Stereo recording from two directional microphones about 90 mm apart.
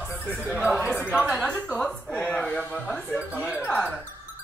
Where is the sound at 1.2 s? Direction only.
10° left (ahead or behind).